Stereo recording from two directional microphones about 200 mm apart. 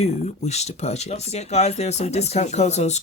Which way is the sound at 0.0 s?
35° left (ahead or behind).